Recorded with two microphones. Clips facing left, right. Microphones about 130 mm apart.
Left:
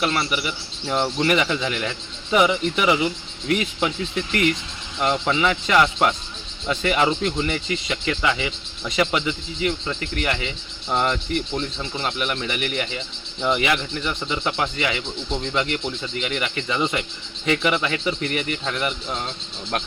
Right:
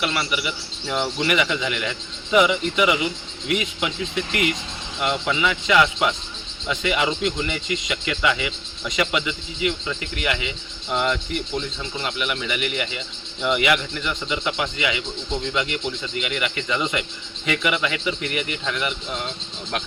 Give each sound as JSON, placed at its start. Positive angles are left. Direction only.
{"t": 0.0, "sound": "speech", "side_deg": 35}
{"t": 5.2, "sound": "speech", "side_deg": 35}